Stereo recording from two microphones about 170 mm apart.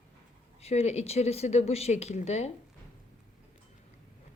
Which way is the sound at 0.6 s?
40° left (ahead or behind).